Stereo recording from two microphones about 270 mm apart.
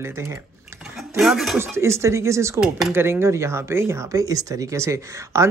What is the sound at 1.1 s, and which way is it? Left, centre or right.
Speech, centre.